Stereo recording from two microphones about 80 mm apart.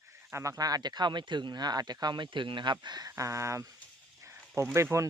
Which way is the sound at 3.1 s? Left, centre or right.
Right.